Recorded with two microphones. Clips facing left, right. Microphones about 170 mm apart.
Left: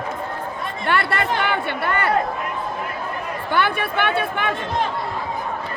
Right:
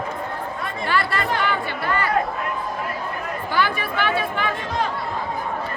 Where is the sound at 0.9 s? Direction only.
60° left (ahead or behind).